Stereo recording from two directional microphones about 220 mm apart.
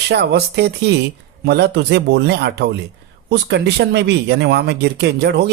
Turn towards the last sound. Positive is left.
turn(degrees=-50)  # may be behind; listen again after turning